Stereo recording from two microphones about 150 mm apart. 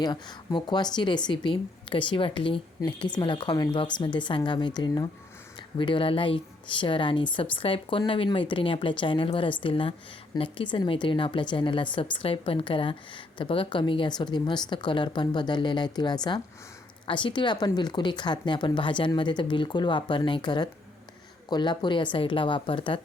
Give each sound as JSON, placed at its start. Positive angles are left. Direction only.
{"t": 0.0, "sound": "speech", "side_deg": 30}